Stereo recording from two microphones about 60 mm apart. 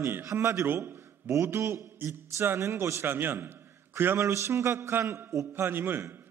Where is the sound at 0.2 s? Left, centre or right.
Right.